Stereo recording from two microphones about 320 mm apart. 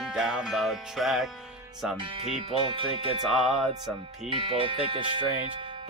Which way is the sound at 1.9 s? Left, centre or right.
Centre.